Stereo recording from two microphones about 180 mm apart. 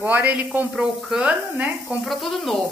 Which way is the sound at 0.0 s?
10° right (ahead or behind).